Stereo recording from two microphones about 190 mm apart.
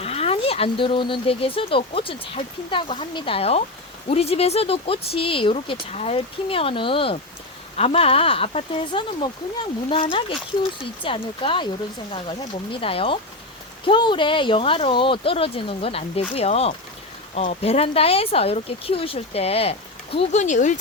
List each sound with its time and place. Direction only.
0.0 s speech: 30° left (ahead or behind)
12.7 s speech: 30° left (ahead or behind)